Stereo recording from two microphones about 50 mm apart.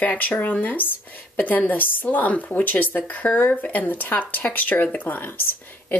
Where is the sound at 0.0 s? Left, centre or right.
Left.